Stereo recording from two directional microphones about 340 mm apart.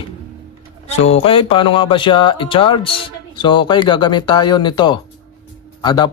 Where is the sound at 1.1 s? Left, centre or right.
Centre.